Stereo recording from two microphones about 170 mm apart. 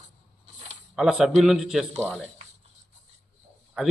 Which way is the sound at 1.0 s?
5° right (ahead or behind).